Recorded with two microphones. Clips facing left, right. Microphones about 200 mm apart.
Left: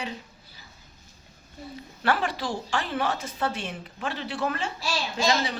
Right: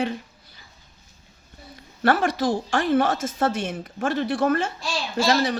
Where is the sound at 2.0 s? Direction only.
50° right (ahead or behind).